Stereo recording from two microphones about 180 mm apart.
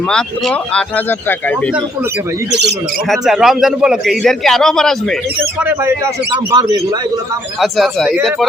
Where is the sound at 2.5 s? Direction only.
70° right (ahead or behind).